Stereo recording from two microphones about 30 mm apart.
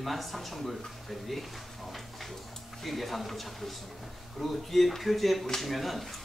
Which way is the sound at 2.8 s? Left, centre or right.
Centre.